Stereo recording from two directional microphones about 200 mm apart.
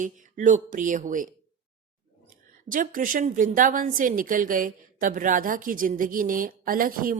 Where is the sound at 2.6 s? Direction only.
40° right (ahead or behind).